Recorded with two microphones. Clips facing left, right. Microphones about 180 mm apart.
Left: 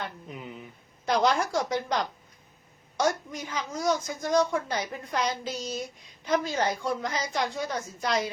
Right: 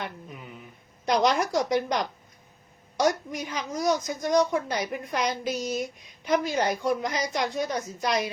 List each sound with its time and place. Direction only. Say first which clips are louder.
0.3 s speech: left 3 dB; 20° left (ahead or behind)
1.0 s a woman's voice: right 1 dB; 20° right (ahead or behind)